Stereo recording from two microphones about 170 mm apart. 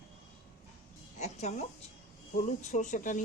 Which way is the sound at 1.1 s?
40° left (ahead or behind).